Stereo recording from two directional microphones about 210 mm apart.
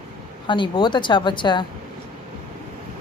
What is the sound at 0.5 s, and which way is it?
A woman's voice, 20° left (ahead or behind).